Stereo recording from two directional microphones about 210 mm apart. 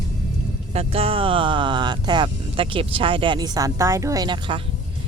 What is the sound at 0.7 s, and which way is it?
Speech, 30° right (ahead or behind).